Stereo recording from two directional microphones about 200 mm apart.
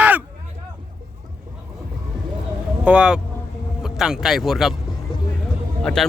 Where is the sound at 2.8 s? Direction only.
5° right (ahead or behind).